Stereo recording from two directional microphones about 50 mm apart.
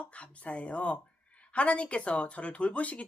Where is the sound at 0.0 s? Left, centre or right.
Left.